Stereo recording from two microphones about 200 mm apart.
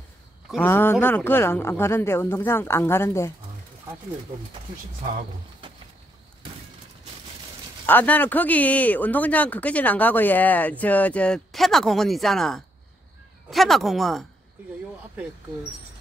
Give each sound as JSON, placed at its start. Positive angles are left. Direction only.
{"t": 0.5, "sound": "speech", "side_deg": 10}
{"t": 7.8, "sound": "speech", "side_deg": 10}